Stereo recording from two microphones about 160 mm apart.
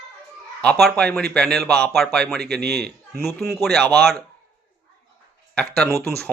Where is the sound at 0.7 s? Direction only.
5° left (ahead or behind).